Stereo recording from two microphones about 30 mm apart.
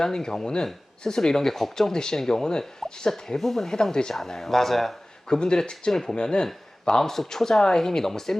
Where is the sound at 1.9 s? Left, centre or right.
Left.